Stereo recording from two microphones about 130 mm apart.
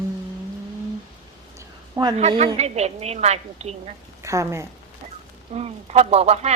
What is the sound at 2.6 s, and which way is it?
Speech, 55° right (ahead or behind).